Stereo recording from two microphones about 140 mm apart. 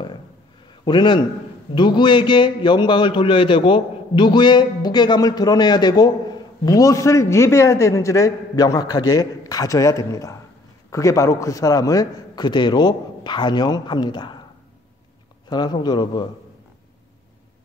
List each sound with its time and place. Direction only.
0.8 s a man's voice: 35° left (ahead or behind)
15.5 s a man's voice: 30° left (ahead or behind)